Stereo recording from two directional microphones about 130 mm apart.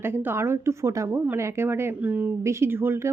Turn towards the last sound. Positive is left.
turn(degrees=-20)  # may be behind; listen again after turning